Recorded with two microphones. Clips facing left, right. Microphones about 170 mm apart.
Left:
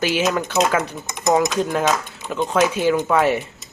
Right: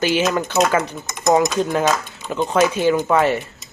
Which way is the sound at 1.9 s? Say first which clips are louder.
Right 1 dB; 10° left (ahead or behind).